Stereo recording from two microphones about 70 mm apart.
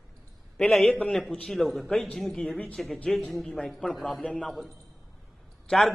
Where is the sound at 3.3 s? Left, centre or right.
Centre.